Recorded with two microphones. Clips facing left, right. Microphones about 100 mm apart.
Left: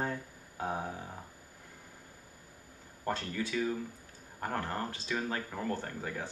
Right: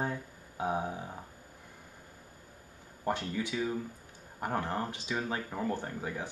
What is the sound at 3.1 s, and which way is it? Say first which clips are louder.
Speech: right 2 dB; 15° right (ahead or behind).